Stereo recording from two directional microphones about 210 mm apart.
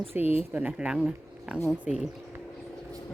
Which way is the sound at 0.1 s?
10° right (ahead or behind).